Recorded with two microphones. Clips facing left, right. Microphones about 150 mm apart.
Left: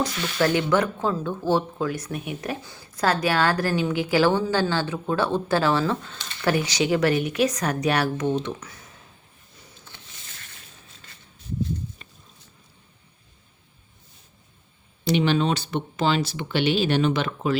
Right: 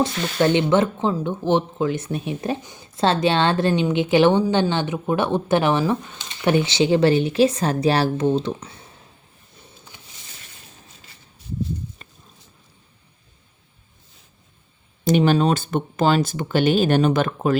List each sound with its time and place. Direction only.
0.3 s speech: 25° right (ahead or behind)
15.0 s speech: 45° right (ahead or behind)